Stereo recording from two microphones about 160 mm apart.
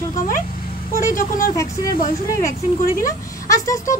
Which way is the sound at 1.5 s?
20° left (ahead or behind).